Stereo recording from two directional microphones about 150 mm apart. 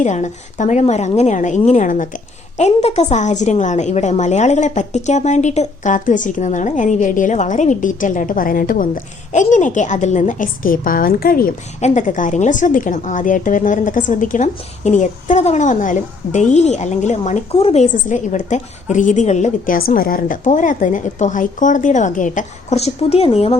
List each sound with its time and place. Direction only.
0.0 s a woman's voice: 55° left (ahead or behind); by 11.5 s 75° left (ahead or behind)
11.8 s a woman's voice: 55° left (ahead or behind)